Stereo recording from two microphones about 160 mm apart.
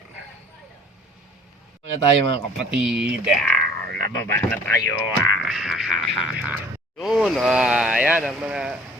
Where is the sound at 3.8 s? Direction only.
70° right (ahead or behind).